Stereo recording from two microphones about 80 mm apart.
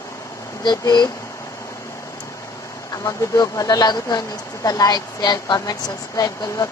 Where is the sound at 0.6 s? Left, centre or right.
Left.